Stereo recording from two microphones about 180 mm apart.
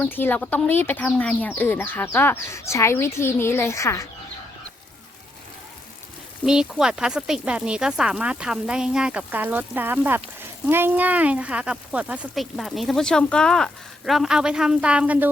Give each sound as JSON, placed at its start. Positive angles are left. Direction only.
{"t": 0.0, "sound": "speech", "side_deg": 10}
{"t": 6.4, "sound": "speech", "side_deg": -5}